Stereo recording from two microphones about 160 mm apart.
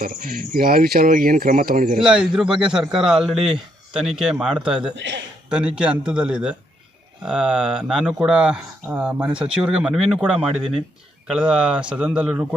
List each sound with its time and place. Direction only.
0.0 s speech: 65° right (ahead or behind)
2.0 s speech: 5° right (ahead or behind)